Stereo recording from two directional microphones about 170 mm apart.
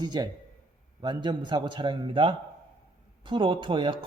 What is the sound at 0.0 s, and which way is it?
A man's voice, 25° right (ahead or behind).